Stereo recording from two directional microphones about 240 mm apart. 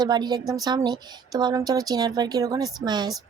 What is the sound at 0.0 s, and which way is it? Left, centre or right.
Speech, centre.